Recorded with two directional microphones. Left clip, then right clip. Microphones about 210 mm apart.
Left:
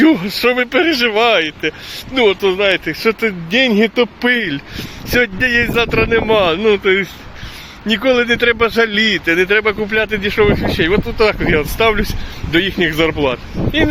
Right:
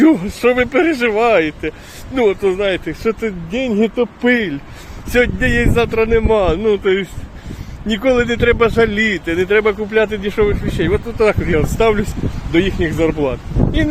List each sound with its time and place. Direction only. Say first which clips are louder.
0.0 s speech: even; centre (ahead or behind)